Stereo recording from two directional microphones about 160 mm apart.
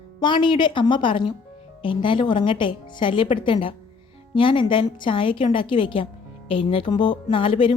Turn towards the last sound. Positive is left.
turn(degrees=30)  # may be behind; listen again after turning